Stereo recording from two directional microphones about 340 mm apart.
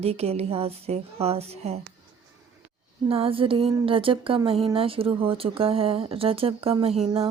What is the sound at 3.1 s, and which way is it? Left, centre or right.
Speech, centre.